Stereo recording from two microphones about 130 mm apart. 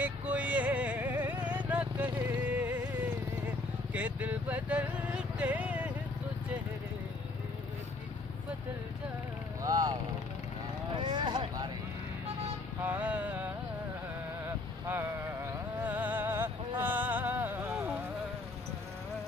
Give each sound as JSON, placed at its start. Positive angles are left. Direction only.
{"t": 0.0, "sound": "vehicle", "side_deg": -10}
{"t": 9.6, "sound": "vehicle", "side_deg": -30}
{"t": 11.0, "sound": "vehicle", "side_deg": -35}
{"t": 12.8, "sound": "music", "side_deg": -15}
{"t": 15.8, "sound": "music", "side_deg": -15}